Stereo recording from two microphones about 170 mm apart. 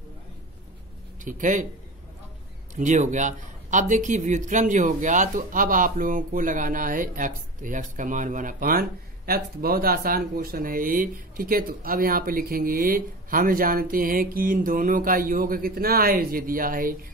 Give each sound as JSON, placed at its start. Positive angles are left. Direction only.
{"t": 1.2, "sound": "speech", "side_deg": -50}
{"t": 2.7, "sound": "speech", "side_deg": -45}